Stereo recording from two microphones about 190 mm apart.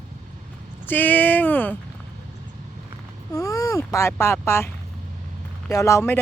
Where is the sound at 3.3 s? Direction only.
20° left (ahead or behind).